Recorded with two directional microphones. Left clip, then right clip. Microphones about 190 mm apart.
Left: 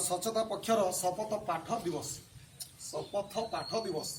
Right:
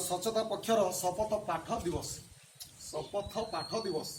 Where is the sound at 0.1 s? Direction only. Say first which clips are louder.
Right 1 dB; 5° left (ahead or behind).